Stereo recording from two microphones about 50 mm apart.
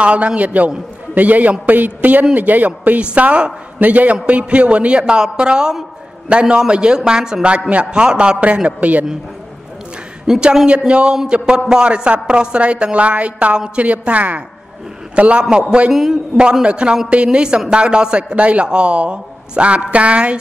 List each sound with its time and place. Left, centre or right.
0.0 s a man's voice: right
3.0 s a man's voice: right
10.4 s speech: centre
10.9 s a man's voice: right
15.9 s a man's voice: centre
16.6 s a man's voice: right